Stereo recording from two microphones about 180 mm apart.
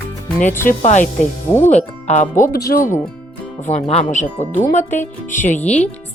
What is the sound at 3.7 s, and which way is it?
Speech, 40° left (ahead or behind).